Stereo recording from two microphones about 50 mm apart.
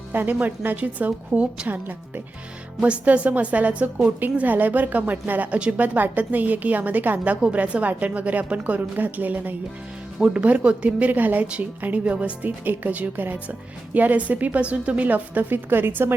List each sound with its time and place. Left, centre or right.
0.1 s a woman's voice: right
1.6 s speech: right
2.8 s a woman's voice: right
4.2 s speech: right
5.5 s a woman's voice: centre
5.7 s a woman's voice: right